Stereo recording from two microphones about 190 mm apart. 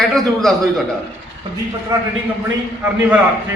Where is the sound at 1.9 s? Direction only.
15° right (ahead or behind).